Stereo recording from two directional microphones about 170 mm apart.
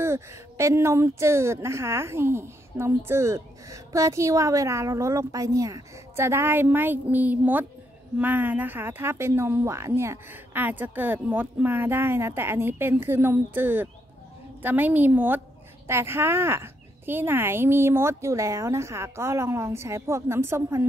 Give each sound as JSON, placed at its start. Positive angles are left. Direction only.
{"t": 0.0, "sound": "speech", "side_deg": -15}